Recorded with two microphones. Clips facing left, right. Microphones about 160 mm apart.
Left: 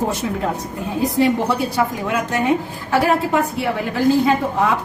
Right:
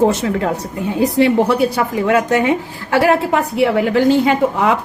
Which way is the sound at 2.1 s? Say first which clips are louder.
Right 7 dB; 80° right.